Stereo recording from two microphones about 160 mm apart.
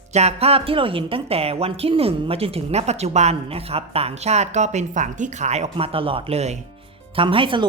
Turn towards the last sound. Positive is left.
turn(degrees=-30)  # may be behind; listen again after turning